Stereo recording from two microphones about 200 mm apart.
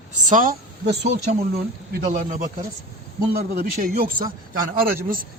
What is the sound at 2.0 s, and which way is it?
Speech, 40° right (ahead or behind).